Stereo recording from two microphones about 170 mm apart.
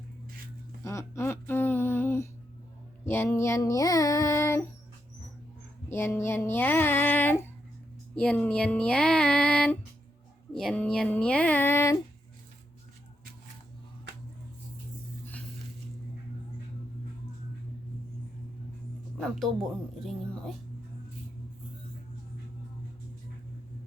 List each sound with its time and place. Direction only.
0.9 s a sound: 15° left (ahead or behind)
3.1 s child singing: 15° left (ahead or behind)
5.9 s speech: 15° left (ahead or behind)
20.0 s speech: centre (ahead or behind)